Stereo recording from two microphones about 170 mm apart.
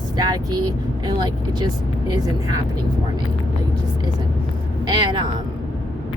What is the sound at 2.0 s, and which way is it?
Speech, 20° right (ahead or behind).